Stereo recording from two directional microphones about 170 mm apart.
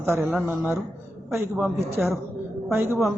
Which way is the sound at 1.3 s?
15° right (ahead or behind).